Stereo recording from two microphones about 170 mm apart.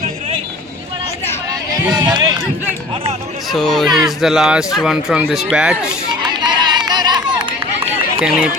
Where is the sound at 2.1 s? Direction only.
25° right (ahead or behind).